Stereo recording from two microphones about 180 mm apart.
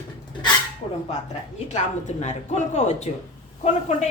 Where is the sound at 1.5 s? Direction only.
40° left (ahead or behind).